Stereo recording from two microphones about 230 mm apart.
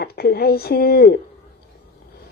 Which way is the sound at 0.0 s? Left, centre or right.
Left.